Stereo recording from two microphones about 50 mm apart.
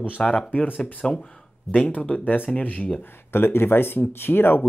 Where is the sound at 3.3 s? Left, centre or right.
Left.